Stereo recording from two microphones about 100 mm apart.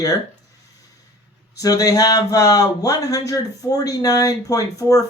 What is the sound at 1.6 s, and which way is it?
Speech, 35° left (ahead or behind).